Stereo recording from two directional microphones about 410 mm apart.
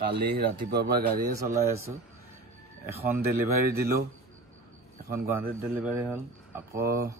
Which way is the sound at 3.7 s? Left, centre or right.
Right.